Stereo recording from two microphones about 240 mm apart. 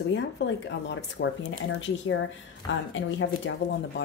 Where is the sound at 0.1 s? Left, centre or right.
Left.